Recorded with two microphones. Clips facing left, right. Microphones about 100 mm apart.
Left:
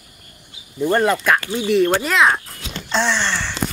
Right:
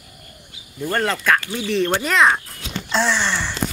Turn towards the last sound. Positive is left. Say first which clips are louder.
# even
turn(degrees=-5)  # may be behind; listen again after turning